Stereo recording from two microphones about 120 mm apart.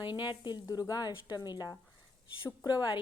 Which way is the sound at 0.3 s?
40° left (ahead or behind).